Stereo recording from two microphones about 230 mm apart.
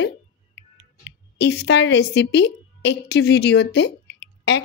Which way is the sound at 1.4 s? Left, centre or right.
Left.